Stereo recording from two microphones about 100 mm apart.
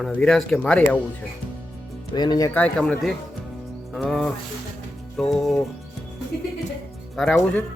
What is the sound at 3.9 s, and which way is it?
Music, centre (ahead or behind).